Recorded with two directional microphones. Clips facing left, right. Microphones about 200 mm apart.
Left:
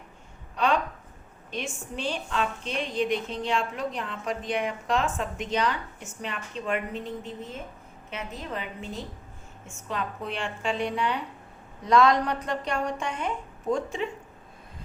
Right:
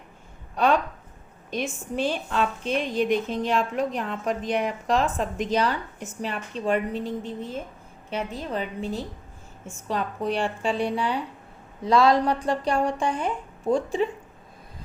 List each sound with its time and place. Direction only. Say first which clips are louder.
2.0 s a woman's voice: right 4 dB; 45° right (ahead or behind)